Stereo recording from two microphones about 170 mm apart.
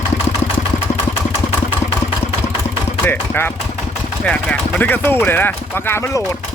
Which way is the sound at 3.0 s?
10° left (ahead or behind).